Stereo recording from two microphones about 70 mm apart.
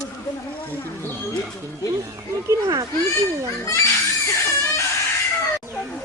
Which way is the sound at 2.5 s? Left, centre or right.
Right.